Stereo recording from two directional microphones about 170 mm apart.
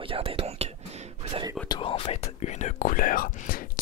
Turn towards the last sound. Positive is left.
turn(degrees=55)  # may be behind; listen again after turning